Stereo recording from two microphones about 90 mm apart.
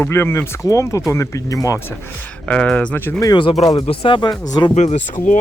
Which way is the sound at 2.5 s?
10° left (ahead or behind).